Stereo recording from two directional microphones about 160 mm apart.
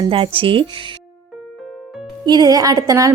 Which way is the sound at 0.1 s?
35° right (ahead or behind).